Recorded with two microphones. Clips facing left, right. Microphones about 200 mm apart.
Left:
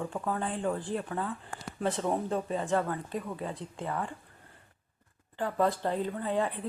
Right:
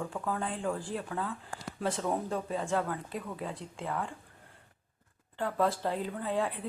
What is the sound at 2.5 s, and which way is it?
Speech, 5° left (ahead or behind).